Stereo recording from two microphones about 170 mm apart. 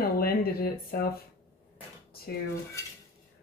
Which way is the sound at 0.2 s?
65° left (ahead or behind).